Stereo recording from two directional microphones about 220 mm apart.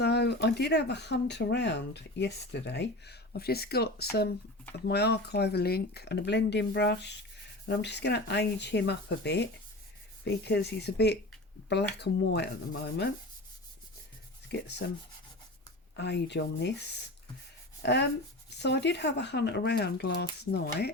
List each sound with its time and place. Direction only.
0.0 s speech: 50° left (ahead or behind)
14.5 s speech: 50° left (ahead or behind)
16.0 s speech: 50° left (ahead or behind)